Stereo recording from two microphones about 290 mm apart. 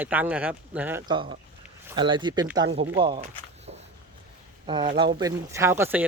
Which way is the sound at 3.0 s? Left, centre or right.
Centre.